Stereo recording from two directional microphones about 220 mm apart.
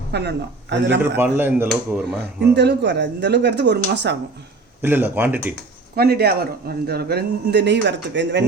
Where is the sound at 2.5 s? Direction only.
50° right (ahead or behind).